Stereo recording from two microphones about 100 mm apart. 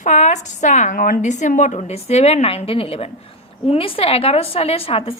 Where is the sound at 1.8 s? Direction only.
90° left.